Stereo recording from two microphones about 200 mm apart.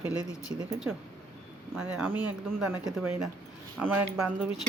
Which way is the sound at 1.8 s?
10° right (ahead or behind).